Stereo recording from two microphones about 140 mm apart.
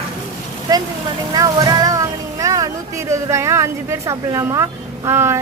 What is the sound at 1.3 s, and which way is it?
Music, 25° right (ahead or behind).